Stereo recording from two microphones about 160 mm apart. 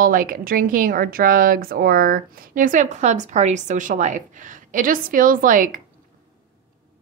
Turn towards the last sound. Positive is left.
turn(degrees=-55)  # may be behind; listen again after turning